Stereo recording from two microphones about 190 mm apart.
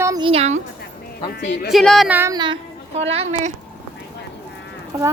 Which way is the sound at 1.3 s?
55° left (ahead or behind).